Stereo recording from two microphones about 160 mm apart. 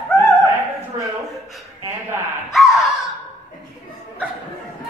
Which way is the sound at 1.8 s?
15° right (ahead or behind).